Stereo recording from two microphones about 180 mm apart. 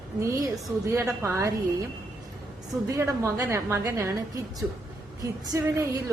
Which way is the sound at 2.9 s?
15° right (ahead or behind).